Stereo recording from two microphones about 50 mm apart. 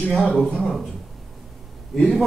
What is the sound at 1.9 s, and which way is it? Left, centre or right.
Speech, centre.